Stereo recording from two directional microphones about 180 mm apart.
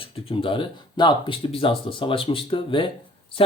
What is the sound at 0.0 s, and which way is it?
Speech, 30° left (ahead or behind).